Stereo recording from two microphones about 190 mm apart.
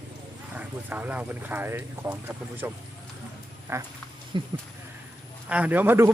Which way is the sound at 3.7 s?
15° right (ahead or behind).